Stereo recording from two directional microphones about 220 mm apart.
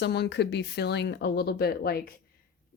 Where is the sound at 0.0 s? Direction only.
50° left (ahead or behind).